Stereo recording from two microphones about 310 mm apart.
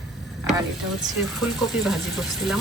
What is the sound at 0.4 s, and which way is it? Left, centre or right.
Speech, centre.